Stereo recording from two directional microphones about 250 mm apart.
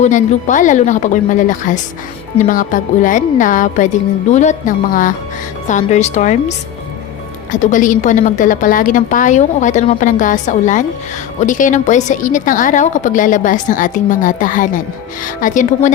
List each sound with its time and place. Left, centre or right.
0.0 s a woman's voice: left
7.5 s a woman's voice: left